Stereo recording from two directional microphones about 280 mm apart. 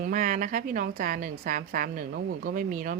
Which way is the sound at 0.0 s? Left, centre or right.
Right.